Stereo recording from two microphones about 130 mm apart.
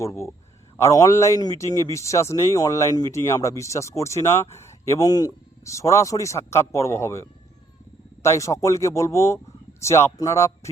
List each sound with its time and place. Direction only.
0.0 s speech: 20° left (ahead or behind)